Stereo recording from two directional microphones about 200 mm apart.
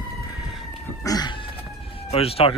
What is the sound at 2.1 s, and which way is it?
Speech, 30° left (ahead or behind).